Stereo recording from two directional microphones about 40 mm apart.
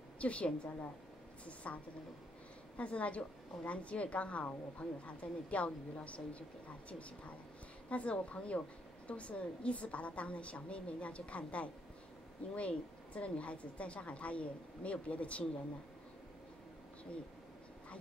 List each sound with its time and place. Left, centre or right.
0.2 s a woman's voice: left
2.8 s a woman's voice: left